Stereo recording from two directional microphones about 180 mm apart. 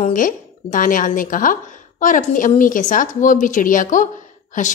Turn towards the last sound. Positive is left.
turn(degrees=45)  # may be behind; listen again after turning